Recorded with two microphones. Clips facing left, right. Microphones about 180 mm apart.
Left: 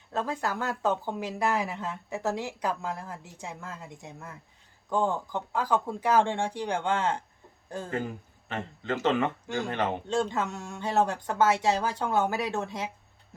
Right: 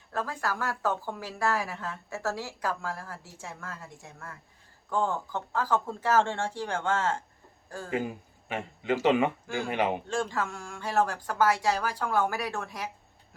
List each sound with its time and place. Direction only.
0.1 s speech: 20° left (ahead or behind)
7.9 s a man's voice: 10° right (ahead or behind)
10.1 s speech: 20° left (ahead or behind)